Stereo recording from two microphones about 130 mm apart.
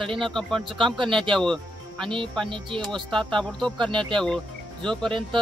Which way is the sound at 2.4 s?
40° right (ahead or behind).